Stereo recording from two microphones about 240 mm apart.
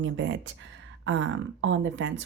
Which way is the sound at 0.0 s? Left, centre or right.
Right.